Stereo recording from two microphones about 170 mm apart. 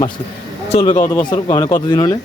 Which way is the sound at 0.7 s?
30° left (ahead or behind).